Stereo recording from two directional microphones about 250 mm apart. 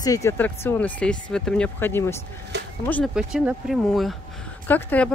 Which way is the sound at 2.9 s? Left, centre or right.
Centre.